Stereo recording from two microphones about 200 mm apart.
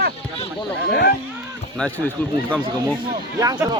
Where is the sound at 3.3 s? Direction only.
15° right (ahead or behind).